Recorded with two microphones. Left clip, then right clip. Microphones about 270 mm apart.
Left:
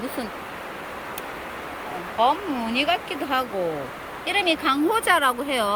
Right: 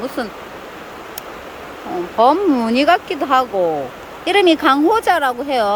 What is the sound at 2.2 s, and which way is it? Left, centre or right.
Speech, right.